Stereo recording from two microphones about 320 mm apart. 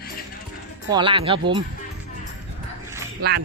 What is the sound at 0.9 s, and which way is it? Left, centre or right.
Speech, centre.